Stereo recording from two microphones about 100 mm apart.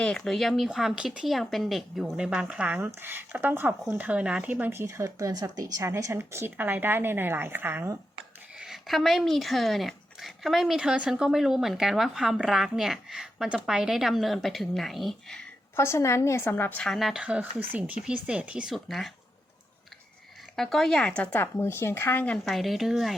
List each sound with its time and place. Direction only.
0.0 s speech: 5° left (ahead or behind); by 4.7 s 15° right (ahead or behind)
4.7 s speech: 25° right (ahead or behind)
8.5 s speech: 5° right (ahead or behind)
15.7 s a woman's voice: 25° left (ahead or behind)
16.8 s speech: centre (ahead or behind)
18.7 s speech: centre (ahead or behind)
20.6 s speech: 5° left (ahead or behind)
21.4 s a woman's voice: 25° left (ahead or behind)
22.4 s speech: centre (ahead or behind)